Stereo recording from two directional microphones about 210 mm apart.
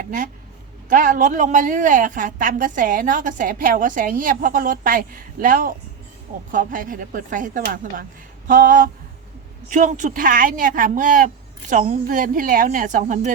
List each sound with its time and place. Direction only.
0.0 s a woman's voice: 40° right (ahead or behind)